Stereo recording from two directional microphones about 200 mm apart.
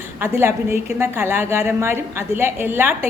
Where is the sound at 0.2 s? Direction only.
10° right (ahead or behind).